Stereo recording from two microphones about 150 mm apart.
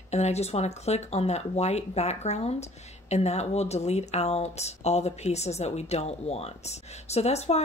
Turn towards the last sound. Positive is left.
turn(degrees=45)  # may be behind; listen again after turning